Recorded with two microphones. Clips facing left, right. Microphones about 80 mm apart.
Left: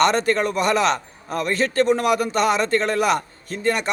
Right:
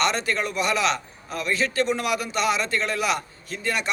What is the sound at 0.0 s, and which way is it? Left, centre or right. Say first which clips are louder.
A man's voice: left 6 dB; left.